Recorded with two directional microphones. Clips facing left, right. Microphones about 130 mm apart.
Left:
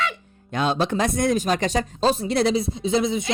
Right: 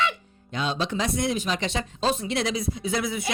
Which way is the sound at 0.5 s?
50° left (ahead or behind).